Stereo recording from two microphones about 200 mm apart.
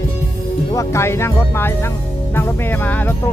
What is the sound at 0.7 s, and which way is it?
Speech, 15° left (ahead or behind).